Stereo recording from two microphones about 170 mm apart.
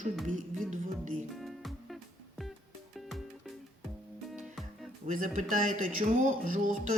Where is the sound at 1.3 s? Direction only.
Centre (ahead or behind).